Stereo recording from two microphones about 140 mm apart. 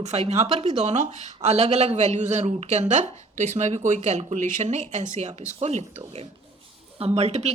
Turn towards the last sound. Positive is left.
turn(degrees=-50)  # may be behind; listen again after turning